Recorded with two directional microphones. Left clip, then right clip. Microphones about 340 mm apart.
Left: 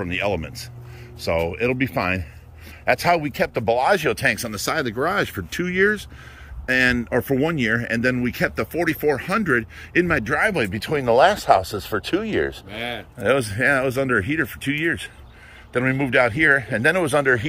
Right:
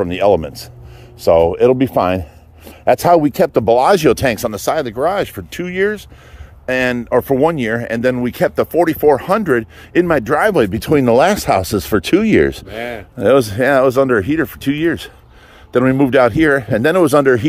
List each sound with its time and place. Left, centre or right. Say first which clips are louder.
0.0 s speech: right 11 dB; centre
12.7 s speech: right 5 dB; centre